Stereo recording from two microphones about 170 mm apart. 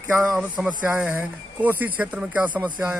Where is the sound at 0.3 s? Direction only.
10° right (ahead or behind).